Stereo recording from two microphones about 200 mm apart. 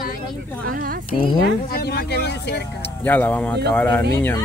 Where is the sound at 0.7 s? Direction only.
45° right (ahead or behind).